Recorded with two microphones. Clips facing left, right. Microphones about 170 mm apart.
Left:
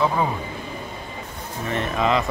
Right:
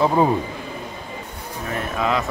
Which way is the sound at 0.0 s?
30° right (ahead or behind).